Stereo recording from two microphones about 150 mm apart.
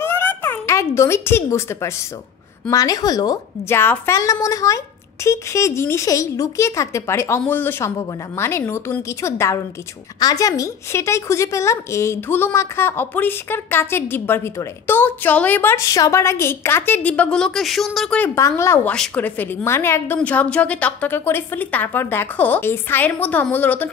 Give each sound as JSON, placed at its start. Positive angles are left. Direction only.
{"t": 0.0, "sound": "a sound", "side_deg": 15}
{"t": 2.7, "sound": "a woman's voice", "side_deg": 25}
{"t": 18.2, "sound": "a woman's voice", "side_deg": 20}